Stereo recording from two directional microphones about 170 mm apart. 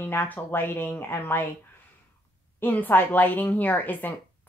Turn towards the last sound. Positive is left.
turn(degrees=10)  # may be behind; listen again after turning